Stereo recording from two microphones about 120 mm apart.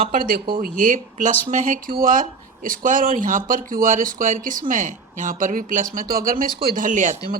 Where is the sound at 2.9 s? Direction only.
90° right.